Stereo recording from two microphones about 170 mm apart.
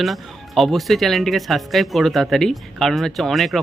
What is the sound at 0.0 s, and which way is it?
Speech, centre (ahead or behind).